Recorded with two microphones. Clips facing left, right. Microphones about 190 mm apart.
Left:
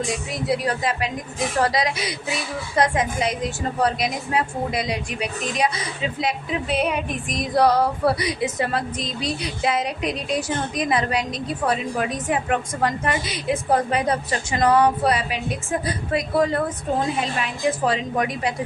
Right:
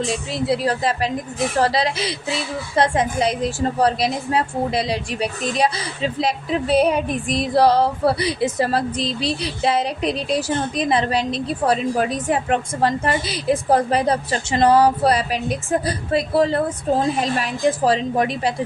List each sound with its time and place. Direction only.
0.0 s a woman's voice: 30° right (ahead or behind)